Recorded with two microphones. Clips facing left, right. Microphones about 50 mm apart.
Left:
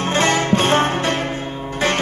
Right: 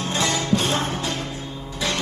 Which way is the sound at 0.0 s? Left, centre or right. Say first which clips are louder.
Left 6 dB; left.